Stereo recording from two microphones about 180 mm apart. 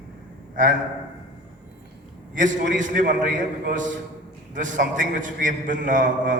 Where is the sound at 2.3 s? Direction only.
45° right (ahead or behind).